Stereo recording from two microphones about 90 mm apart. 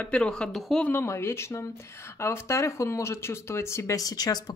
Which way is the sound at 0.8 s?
25° left (ahead or behind).